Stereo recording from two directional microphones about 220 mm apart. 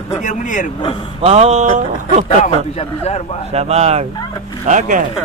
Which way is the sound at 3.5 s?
30° right (ahead or behind).